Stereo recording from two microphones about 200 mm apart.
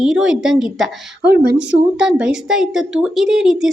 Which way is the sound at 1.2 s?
55° right (ahead or behind).